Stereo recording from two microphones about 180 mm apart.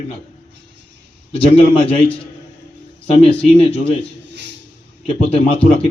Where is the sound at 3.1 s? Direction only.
35° left (ahead or behind).